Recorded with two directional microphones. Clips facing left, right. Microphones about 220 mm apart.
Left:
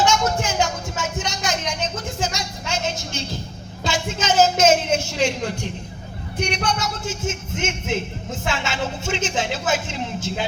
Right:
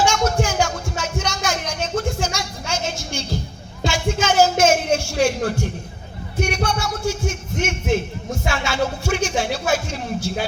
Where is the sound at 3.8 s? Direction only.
20° left (ahead or behind).